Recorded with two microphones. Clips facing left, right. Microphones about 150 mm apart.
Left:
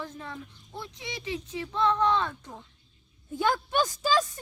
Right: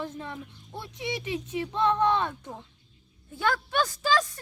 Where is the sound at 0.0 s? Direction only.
20° right (ahead or behind).